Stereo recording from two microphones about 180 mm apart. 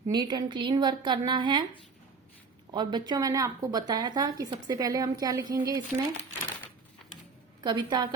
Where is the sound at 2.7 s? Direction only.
25° right (ahead or behind).